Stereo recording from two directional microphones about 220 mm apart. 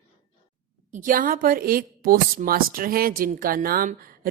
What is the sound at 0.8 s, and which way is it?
A woman's voice, 35° right (ahead or behind).